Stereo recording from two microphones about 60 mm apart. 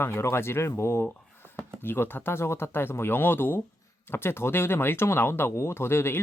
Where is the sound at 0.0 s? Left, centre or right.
Left.